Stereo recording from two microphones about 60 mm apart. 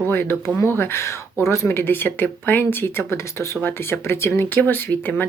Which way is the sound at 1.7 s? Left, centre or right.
Left.